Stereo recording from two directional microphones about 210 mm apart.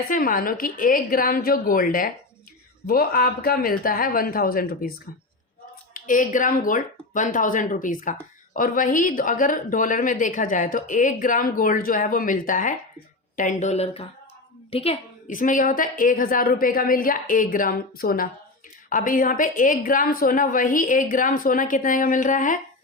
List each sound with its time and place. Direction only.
0.1 s a woman's voice: 40° left (ahead or behind)
5.9 s speech: 40° left (ahead or behind)